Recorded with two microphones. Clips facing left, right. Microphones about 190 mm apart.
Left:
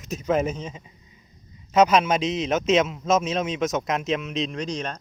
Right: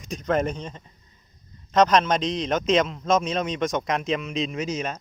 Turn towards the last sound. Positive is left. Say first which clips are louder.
# right 1 dB
turn(degrees=-5)  # may be behind; listen again after turning